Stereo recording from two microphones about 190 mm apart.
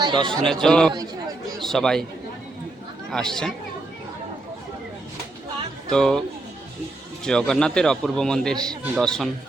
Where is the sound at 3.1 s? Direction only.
Centre (ahead or behind).